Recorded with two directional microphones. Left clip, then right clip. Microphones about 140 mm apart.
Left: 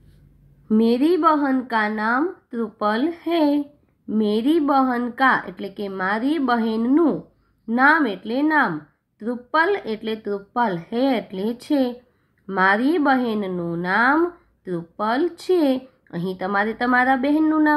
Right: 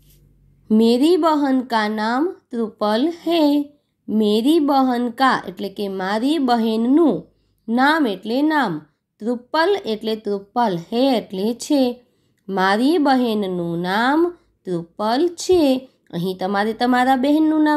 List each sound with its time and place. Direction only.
0.7 s speech: 40° right (ahead or behind)